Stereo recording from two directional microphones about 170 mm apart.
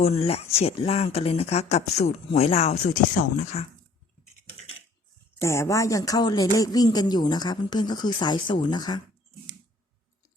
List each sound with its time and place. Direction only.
0.0 s speech: 40° left (ahead or behind)
5.4 s speech: 15° left (ahead or behind)